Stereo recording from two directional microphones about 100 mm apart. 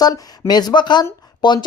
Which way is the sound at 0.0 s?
40° left (ahead or behind).